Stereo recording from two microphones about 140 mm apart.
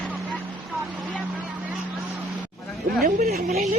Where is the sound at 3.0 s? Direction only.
90° right.